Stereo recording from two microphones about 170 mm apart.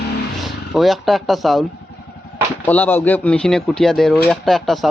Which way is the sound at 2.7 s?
10° left (ahead or behind).